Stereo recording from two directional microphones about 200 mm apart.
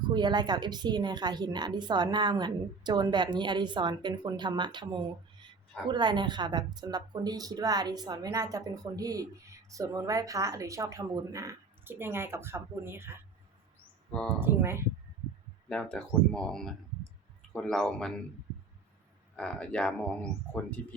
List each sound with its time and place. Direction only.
0.1 s a woman's voice: 20° right (ahead or behind)
14.1 s speech: 5° left (ahead or behind)
14.3 s speech: 10° right (ahead or behind)
15.7 s speech: 5° left (ahead or behind)
19.4 s speech: 5° left (ahead or behind)